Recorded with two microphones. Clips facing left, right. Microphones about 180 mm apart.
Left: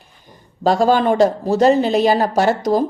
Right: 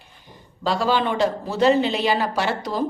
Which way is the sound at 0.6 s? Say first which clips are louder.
Left 7 dB; 45° left (ahead or behind).